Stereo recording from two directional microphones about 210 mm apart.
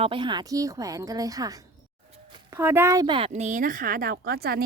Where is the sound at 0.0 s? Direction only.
25° right (ahead or behind).